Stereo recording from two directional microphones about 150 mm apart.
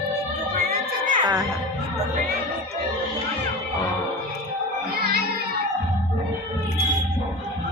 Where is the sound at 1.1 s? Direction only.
25° right (ahead or behind).